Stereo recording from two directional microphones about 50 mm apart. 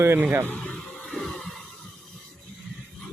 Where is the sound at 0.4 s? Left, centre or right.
Left.